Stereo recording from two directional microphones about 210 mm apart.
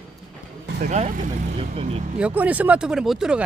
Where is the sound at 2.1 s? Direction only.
5° right (ahead or behind).